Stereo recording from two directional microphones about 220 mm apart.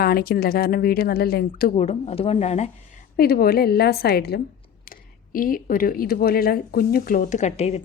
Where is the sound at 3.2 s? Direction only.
45° left (ahead or behind).